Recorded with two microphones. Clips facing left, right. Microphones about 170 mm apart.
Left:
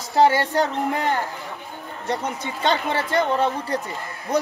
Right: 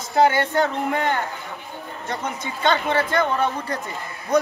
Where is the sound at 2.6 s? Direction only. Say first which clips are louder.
Right 2 dB; 35° left (ahead or behind).